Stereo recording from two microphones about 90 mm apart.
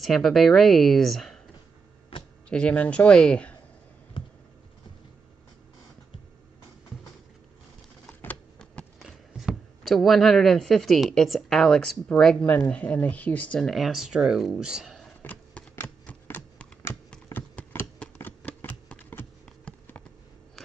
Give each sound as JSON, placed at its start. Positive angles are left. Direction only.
{"t": 0.0, "sound": "speech", "side_deg": 5}
{"t": 2.5, "sound": "speech", "side_deg": 15}
{"t": 8.1, "sound": "a sound", "side_deg": 20}
{"t": 9.0, "sound": "speech", "side_deg": -5}
{"t": 13.7, "sound": "speech", "side_deg": 0}
{"t": 15.2, "sound": "a sound", "side_deg": 20}